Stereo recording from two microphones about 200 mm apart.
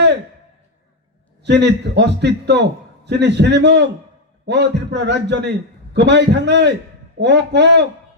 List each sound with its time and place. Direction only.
1.5 s a man's voice: 60° right (ahead or behind)